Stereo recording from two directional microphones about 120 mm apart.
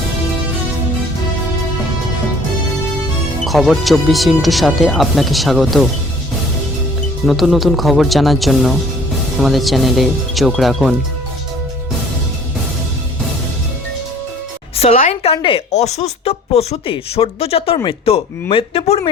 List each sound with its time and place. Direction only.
3.4 s speech: centre (ahead or behind)
7.3 s speech: centre (ahead or behind)
14.8 s speech: 65° left (ahead or behind); by 15.6 s 50° left (ahead or behind)
15.7 s speech: 65° left (ahead or behind)